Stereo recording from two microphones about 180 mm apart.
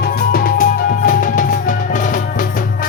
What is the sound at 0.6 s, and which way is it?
Music, 50° left (ahead or behind).